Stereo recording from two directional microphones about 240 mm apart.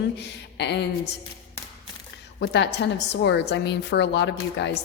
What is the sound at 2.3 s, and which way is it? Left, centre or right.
A woman's voice, left.